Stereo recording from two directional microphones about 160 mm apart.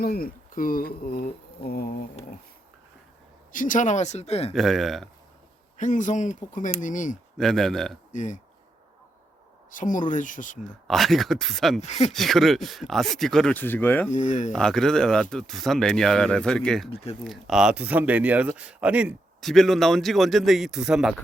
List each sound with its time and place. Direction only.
0.0 s speech: 70° left (ahead or behind)
3.5 s speech: 55° left (ahead or behind); by 4.5 s 40° left (ahead or behind)
4.5 s speech: centre (ahead or behind)
5.7 s speech: 50° left (ahead or behind)
7.3 s speech: centre (ahead or behind)
8.1 s speech: 50° left (ahead or behind)
9.7 s speech: 55° left (ahead or behind)
10.8 s speech: centre (ahead or behind)
11.8 s speech: 45° left (ahead or behind)
12.1 s speech: centre (ahead or behind)
14.1 s speech: 50° left (ahead or behind)
14.5 s speech: centre (ahead or behind)
16.9 s speech: 40° left (ahead or behind)
17.2 s speech: centre (ahead or behind)